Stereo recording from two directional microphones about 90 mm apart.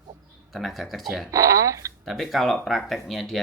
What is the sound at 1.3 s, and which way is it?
Speech, 35° right (ahead or behind).